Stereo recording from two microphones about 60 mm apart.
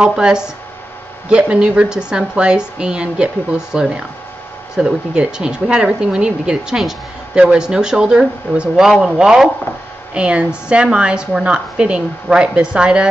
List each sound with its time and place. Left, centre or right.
0.0 s a woman's voice: centre